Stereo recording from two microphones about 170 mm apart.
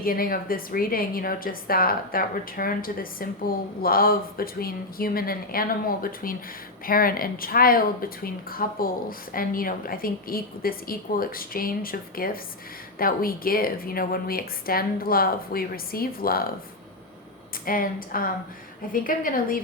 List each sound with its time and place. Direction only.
0.0 s speech: 60° left (ahead or behind)
17.7 s speech: 55° left (ahead or behind)